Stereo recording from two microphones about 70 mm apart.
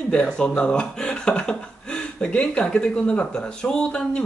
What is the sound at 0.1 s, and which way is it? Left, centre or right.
Speech, centre.